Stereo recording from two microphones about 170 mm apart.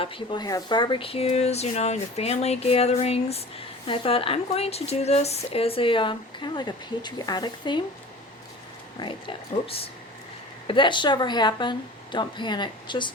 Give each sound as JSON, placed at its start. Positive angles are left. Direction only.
{"t": 0.0, "sound": "speech", "side_deg": 30}
{"t": 9.0, "sound": "a woman's voice", "side_deg": 30}